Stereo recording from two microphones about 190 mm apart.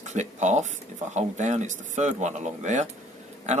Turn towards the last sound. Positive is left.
turn(degrees=-40)  # may be behind; listen again after turning